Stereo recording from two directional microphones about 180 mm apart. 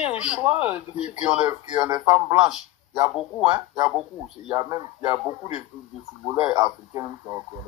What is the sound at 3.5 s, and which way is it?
Speech, 20° right (ahead or behind).